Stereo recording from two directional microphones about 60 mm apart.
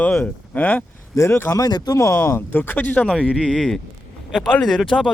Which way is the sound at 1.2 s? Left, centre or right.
Left.